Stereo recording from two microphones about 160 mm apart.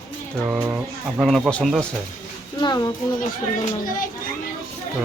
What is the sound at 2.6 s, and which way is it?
Speech, 25° left (ahead or behind).